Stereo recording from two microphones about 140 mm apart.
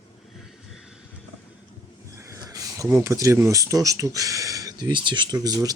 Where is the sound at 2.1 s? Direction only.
25° right (ahead or behind).